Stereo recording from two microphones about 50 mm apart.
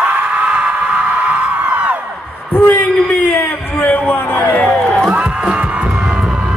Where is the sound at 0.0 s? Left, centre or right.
Right.